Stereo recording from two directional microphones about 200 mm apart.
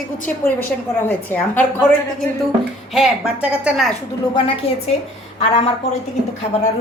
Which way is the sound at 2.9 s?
5° right (ahead or behind).